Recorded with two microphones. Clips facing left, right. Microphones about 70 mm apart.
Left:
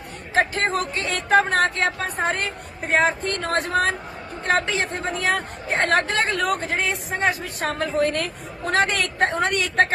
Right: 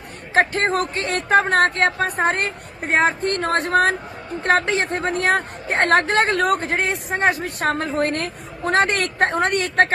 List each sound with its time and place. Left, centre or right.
0.7 s a woman's voice: right